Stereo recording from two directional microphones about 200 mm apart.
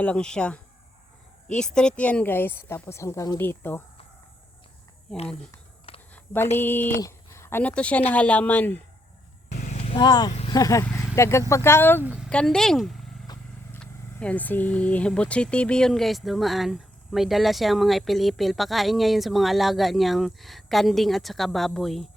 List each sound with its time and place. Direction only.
0.0 s speech: 5° left (ahead or behind)
5.1 s speech: 5° left (ahead or behind)
5.9 s a sound: 30° left (ahead or behind)
6.6 s speech: 10° left (ahead or behind)
9.5 s vehicle: 35° left (ahead or behind)
10.5 s speech: 15° left (ahead or behind)
12.0 s a sound: 5° right (ahead or behind)
12.3 s speech: 5° left (ahead or behind)
13.3 s vehicle: 20° left (ahead or behind)
13.7 s speech: 5° left (ahead or behind)